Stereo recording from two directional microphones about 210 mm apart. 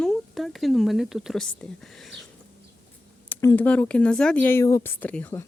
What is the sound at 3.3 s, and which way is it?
Speech, 10° left (ahead or behind).